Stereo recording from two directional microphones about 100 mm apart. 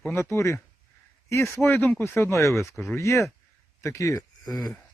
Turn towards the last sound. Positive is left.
turn(degrees=40)  # may be behind; listen again after turning